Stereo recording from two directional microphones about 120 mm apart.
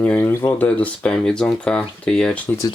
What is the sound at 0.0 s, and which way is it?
Speech, 15° left (ahead or behind).